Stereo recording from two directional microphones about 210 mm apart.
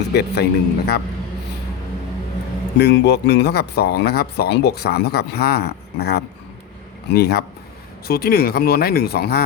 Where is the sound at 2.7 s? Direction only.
50° left (ahead or behind).